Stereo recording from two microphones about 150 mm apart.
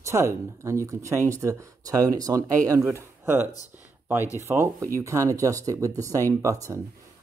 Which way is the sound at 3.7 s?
15° right (ahead or behind).